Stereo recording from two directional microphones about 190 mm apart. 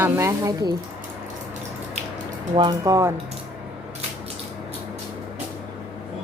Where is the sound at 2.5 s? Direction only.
20° right (ahead or behind).